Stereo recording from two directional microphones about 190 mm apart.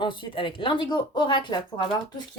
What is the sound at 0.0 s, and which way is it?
Speech, 25° left (ahead or behind).